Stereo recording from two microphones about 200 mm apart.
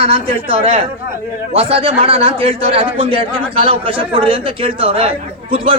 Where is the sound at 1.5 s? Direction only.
30° right (ahead or behind).